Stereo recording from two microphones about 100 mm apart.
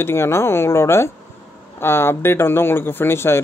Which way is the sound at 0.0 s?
25° left (ahead or behind).